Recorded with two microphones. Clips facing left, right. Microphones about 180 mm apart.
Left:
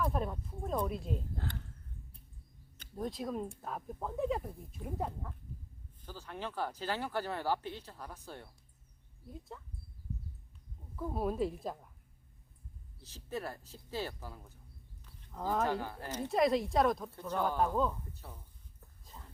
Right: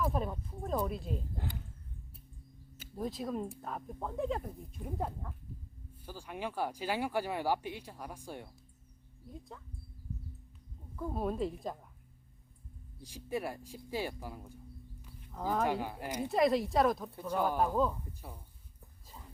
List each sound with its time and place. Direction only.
0.0 s speech: centre (ahead or behind)
1.4 s a sound: 15° right (ahead or behind)
2.7 s speech: 5° right (ahead or behind)
6.1 s speech: 10° right (ahead or behind)
9.5 s speech: centre (ahead or behind)
10.9 s speech: 5° left (ahead or behind)
13.0 s speech: 10° right (ahead or behind)
15.0 s a sound: 5° right (ahead or behind)
15.6 s speech: 15° right (ahead or behind)
16.3 s speech: centre (ahead or behind)
17.1 s speech: 10° right (ahead or behind)
19.0 s a sound: 10° right (ahead or behind)